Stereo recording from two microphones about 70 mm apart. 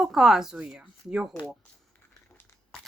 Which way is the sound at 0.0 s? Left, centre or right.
Centre.